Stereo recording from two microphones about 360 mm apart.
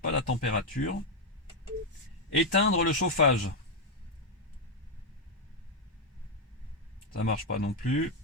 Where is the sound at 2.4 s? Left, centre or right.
Left.